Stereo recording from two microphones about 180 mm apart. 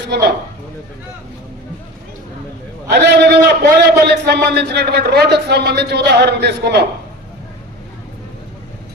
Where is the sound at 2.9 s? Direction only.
70° right (ahead or behind).